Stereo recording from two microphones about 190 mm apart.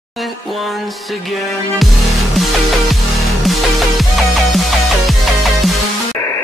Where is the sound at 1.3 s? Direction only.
Centre (ahead or behind).